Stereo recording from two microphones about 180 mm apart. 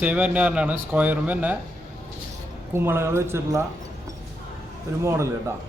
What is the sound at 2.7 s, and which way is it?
Speech, 15° right (ahead or behind).